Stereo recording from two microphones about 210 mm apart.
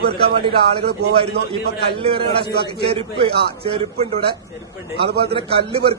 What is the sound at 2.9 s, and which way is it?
Speech, 25° right (ahead or behind).